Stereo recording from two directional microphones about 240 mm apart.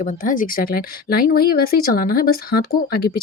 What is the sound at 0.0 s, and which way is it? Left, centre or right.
Speech, left.